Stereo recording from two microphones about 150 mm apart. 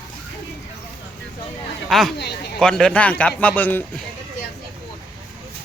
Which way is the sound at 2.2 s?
90° left.